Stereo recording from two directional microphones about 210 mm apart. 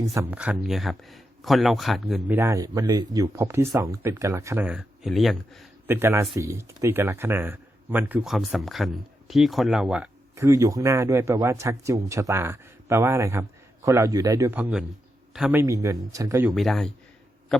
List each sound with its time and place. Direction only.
0.0 s speech: 15° right (ahead or behind)
5.9 s speech: 10° right (ahead or behind)
10.3 s speech: 15° right (ahead or behind)
16.5 s speech: centre (ahead or behind)